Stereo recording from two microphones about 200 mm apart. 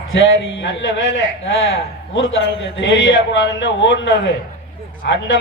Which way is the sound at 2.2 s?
70° left (ahead or behind).